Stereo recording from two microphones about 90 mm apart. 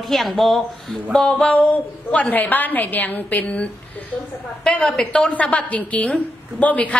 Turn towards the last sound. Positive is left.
turn(degrees=15)  # may be behind; listen again after turning